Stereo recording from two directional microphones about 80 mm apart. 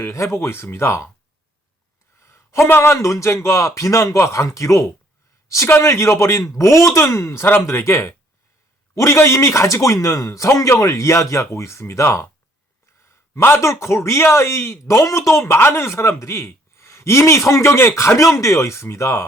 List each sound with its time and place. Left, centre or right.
0.0 s a man's voice: left
2.2 s a man's voice: left